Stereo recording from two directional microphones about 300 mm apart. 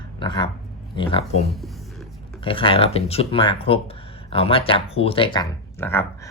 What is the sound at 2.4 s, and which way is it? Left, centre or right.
Speech, centre.